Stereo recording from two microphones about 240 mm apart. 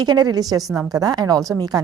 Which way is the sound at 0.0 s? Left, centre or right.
Centre.